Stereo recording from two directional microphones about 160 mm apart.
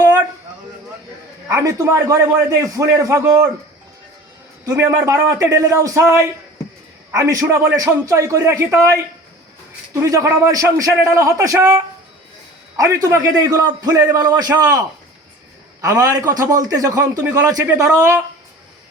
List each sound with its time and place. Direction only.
1.5 s a man's voice: 20° right (ahead or behind)
4.6 s a man's voice: 15° right (ahead or behind)